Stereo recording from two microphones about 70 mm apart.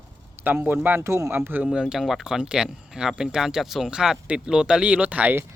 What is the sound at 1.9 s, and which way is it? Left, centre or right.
Speech, centre.